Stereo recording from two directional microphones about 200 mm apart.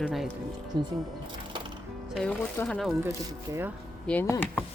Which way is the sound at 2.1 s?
5° left (ahead or behind).